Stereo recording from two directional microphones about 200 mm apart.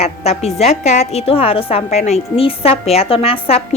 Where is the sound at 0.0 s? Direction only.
30° left (ahead or behind).